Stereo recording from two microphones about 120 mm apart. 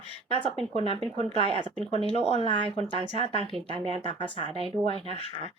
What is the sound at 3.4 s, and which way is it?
Speech, 55° right (ahead or behind).